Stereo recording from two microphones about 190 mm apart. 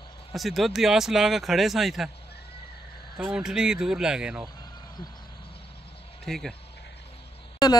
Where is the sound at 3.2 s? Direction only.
5° right (ahead or behind).